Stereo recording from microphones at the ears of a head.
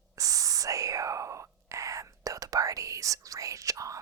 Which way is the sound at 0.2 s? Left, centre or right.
Right.